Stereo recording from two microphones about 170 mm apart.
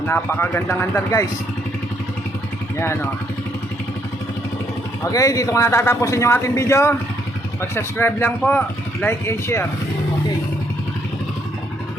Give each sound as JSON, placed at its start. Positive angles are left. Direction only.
{"t": 0.1, "sound": "speech", "side_deg": 15}
{"t": 2.7, "sound": "speech", "side_deg": 15}
{"t": 5.0, "sound": "speech", "side_deg": 20}